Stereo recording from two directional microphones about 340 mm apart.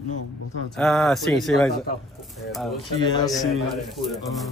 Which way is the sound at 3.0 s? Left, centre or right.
Centre.